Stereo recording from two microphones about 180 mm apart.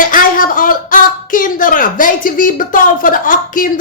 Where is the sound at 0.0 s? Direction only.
50° left (ahead or behind).